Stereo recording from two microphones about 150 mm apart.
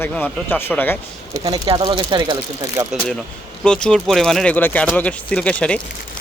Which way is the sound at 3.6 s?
5° left (ahead or behind).